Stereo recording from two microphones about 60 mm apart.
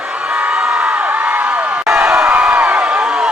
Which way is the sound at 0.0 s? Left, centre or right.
Centre.